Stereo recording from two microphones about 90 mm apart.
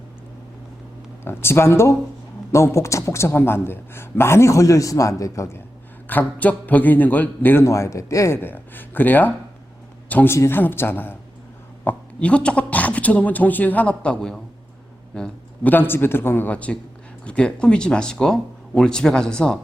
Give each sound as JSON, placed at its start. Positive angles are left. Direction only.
{"t": 1.2, "sound": "a man's voice", "side_deg": 25}
{"t": 6.1, "sound": "speech", "side_deg": 20}
{"t": 7.7, "sound": "speech", "side_deg": 35}
{"t": 10.3, "sound": "a man's voice", "side_deg": 30}
{"t": 15.1, "sound": "a sound", "side_deg": 10}
{"t": 15.7, "sound": "a woman's voice", "side_deg": 25}